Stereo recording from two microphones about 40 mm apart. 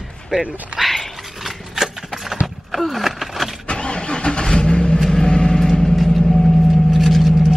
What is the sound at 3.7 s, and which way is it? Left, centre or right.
Vehicle, left.